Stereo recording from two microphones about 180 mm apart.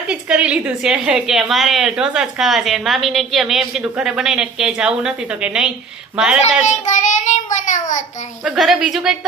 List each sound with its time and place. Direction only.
0.1 s a woman's voice: 5° right (ahead or behind)
6.4 s a child's voice: 40° left (ahead or behind)
8.4 s a woman's voice: centre (ahead or behind)